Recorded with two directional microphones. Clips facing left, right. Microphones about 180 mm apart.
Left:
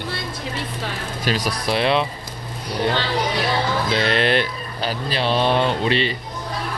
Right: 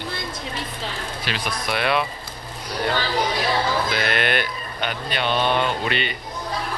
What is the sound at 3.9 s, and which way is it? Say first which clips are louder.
Speech: left 4 dB; 30° left (ahead or behind).